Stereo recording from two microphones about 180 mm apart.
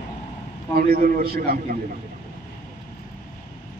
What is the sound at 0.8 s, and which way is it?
A man's voice, 55° right (ahead or behind).